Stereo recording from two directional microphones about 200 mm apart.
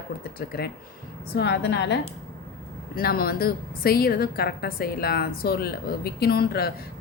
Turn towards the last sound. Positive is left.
turn(degrees=50)  # may be behind; listen again after turning